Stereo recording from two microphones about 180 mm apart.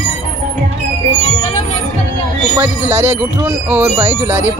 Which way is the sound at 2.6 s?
15° right (ahead or behind).